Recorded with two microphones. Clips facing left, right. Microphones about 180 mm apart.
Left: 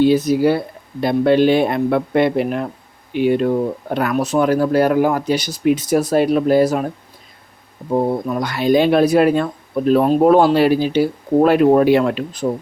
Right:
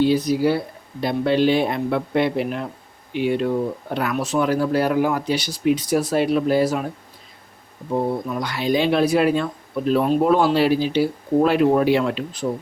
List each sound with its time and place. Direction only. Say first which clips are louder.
0.3 s speech: left 4 dB; 55° left (ahead or behind)